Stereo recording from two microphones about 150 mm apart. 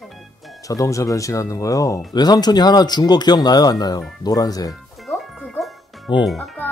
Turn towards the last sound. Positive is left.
turn(degrees=0)  # may be behind; listen again after turning